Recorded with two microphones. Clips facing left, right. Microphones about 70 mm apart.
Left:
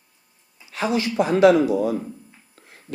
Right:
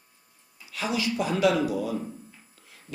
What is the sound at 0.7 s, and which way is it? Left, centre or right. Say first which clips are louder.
A man's voice: left 5 dB; left.